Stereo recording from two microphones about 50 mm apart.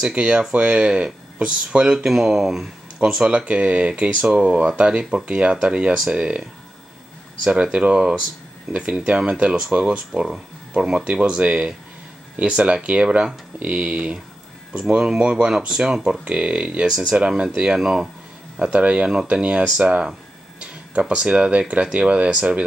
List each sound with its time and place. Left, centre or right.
0.1 s speech: centre
3.0 s speech: centre
7.4 s speech: centre
13.9 s speech: centre
16.8 s speech: centre
17.7 s speech: centre
18.7 s speech: right